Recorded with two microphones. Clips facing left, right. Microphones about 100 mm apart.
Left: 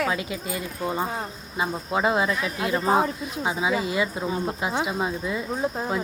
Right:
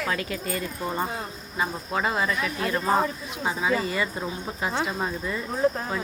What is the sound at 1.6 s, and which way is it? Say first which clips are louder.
Speech: left 3 dB; 20° left (ahead or behind).